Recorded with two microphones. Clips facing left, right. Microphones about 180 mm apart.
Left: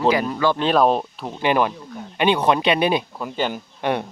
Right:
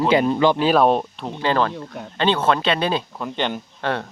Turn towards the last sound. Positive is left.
turn(degrees=15)  # may be behind; listen again after turning